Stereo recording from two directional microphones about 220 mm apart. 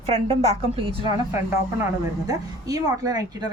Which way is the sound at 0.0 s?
30° right (ahead or behind).